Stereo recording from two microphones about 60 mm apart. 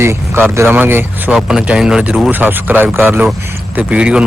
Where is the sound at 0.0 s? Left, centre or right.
Right.